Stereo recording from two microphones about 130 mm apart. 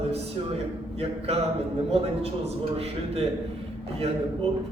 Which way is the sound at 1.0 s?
55° right (ahead or behind).